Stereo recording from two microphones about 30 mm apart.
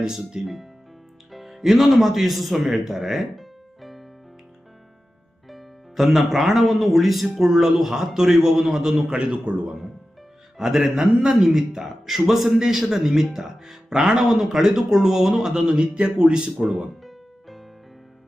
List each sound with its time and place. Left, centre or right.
0.0 s speech: centre
0.4 s speech: centre
3.3 s music: centre
5.5 s speech: centre
9.0 s a man's voice: right
10.6 s speech: centre; by 16.5 s right
16.6 s speech: centre
17.0 s music: centre